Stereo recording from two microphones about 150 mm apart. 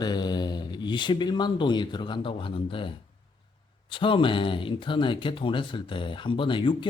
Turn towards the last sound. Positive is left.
turn(degrees=35)  # may be behind; listen again after turning